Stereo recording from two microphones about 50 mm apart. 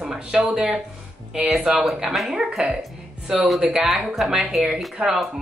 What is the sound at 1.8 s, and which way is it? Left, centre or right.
A woman's voice, centre.